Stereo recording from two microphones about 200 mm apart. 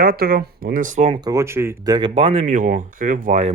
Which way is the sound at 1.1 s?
20° right (ahead or behind).